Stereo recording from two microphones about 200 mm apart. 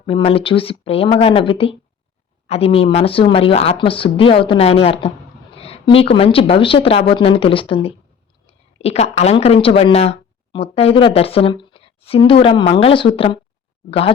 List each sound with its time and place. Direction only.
0.0 s a woman's voice: 30° left (ahead or behind)